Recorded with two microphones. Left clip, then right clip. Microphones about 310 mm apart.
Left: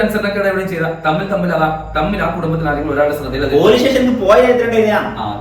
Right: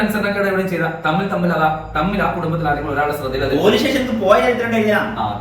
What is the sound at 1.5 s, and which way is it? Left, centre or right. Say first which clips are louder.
A man's voice: even; centre.